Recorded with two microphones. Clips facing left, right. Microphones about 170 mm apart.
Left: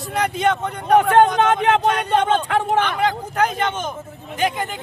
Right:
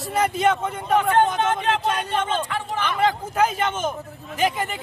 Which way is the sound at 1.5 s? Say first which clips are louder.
Left 5 dB; 65° left (ahead or behind).